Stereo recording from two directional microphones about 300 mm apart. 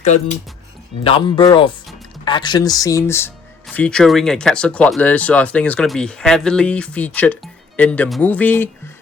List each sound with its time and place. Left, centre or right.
0.0 s speech: left; by 8.7 s centre